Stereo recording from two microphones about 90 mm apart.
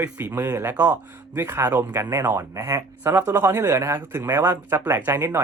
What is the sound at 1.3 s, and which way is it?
Speech, 30° right (ahead or behind).